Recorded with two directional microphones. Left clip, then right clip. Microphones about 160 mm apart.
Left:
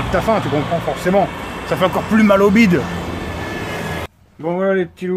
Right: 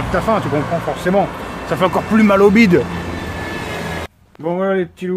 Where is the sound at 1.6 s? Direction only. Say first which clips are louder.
Right 1 dB; 25° right (ahead or behind).